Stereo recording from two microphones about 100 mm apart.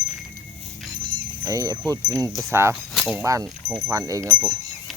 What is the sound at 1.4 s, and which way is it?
Speech, 35° right (ahead or behind).